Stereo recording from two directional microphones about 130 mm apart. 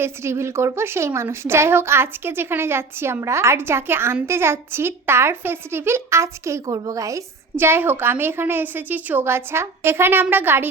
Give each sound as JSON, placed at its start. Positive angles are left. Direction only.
{"t": 0.0, "sound": "speech", "side_deg": -20}